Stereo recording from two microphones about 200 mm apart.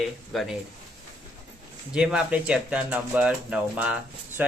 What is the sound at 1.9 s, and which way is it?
Speech, 5° right (ahead or behind).